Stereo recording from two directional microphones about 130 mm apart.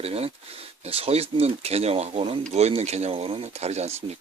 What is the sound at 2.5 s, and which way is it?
Speech, 55° right (ahead or behind).